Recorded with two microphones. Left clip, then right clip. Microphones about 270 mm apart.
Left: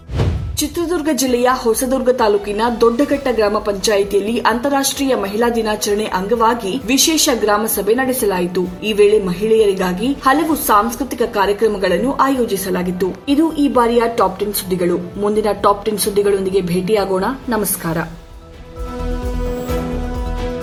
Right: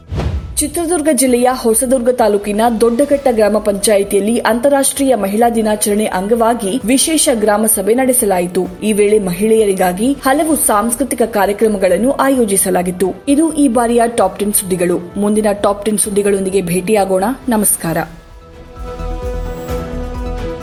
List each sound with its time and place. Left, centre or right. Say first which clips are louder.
0.8 s a woman's voice: right 5 dB; right